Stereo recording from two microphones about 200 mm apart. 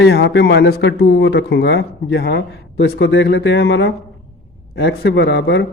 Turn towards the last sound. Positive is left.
turn(degrees=60)  # may be behind; listen again after turning